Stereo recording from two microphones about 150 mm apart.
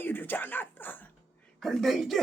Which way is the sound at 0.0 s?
15° left (ahead or behind).